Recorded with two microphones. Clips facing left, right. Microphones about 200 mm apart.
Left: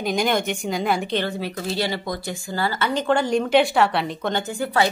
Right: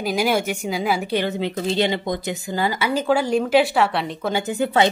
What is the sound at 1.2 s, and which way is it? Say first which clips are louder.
Speech: right 4 dB; 20° right (ahead or behind).